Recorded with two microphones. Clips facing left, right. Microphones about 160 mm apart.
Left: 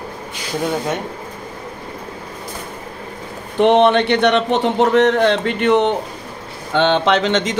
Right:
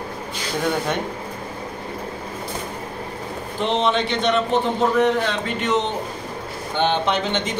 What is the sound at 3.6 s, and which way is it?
A man's voice, 65° left (ahead or behind).